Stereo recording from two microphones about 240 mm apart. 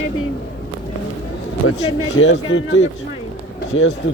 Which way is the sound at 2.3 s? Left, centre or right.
Left.